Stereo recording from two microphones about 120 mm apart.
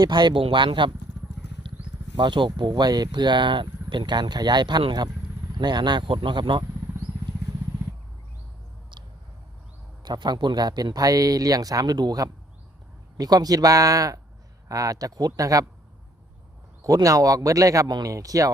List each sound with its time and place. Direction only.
0.0 s speech: 40° right (ahead or behind)
1.7 s a sound: 45° right (ahead or behind)
2.1 s speech: 40° right (ahead or behind)
10.0 s speech: 35° right (ahead or behind)
16.8 s speech: 30° right (ahead or behind)